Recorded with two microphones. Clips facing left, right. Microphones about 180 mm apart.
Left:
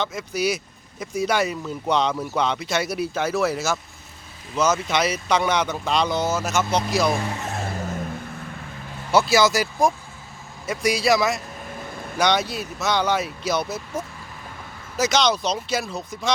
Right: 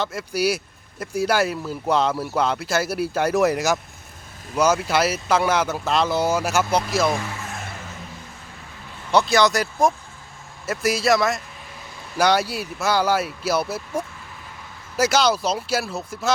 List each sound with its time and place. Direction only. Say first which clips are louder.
0.0 s speech: right 1 dB; 5° right (ahead or behind)
7.4 s vehicle: left 6 dB; 30° left (ahead or behind)
9.1 s speech: even; 5° left (ahead or behind)